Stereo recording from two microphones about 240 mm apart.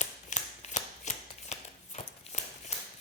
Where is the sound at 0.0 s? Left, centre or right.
Left.